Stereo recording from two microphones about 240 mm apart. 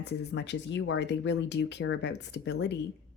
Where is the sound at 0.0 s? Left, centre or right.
Left.